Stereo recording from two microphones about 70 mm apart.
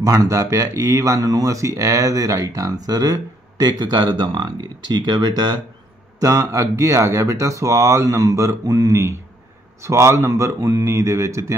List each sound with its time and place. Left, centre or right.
0.0 s speech: right
6.1 s speech: right